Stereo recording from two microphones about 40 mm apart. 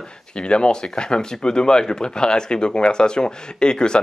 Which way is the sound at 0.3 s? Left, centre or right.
Left.